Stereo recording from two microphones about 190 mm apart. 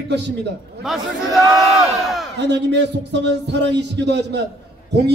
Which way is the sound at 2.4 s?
65° right (ahead or behind).